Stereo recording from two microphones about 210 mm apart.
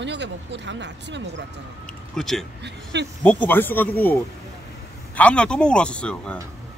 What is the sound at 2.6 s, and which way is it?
Speech, 55° right (ahead or behind).